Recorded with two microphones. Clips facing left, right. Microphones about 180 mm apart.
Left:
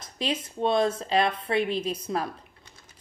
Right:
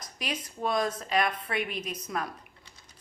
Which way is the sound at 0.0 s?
25° left (ahead or behind).